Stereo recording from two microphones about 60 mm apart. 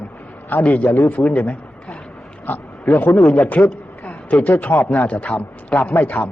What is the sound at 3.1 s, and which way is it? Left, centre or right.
Speech, centre.